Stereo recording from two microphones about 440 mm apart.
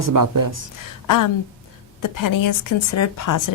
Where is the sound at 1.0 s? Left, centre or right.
Left.